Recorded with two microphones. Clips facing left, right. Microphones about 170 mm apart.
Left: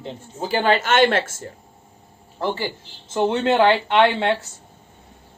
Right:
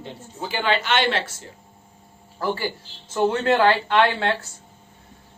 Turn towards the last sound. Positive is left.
turn(degrees=20)  # may be behind; listen again after turning